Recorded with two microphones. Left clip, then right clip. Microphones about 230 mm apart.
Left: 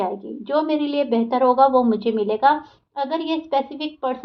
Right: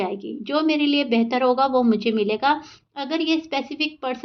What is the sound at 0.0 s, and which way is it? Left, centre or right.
A woman's voice, right.